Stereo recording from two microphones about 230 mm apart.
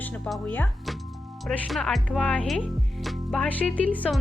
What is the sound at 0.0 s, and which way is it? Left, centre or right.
Speech, centre.